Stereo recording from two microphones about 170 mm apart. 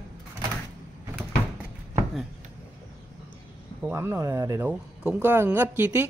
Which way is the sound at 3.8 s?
15° right (ahead or behind).